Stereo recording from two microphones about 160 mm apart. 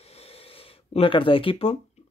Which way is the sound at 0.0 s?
40° left (ahead or behind).